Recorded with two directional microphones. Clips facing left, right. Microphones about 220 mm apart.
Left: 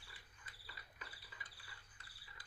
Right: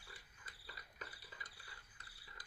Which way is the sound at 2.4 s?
40° right (ahead or behind).